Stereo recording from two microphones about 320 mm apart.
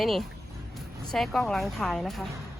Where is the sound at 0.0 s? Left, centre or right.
Centre.